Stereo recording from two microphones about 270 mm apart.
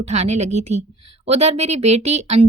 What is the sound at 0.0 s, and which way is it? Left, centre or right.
Speech, right.